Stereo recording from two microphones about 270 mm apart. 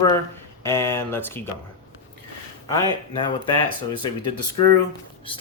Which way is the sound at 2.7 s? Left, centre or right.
Centre.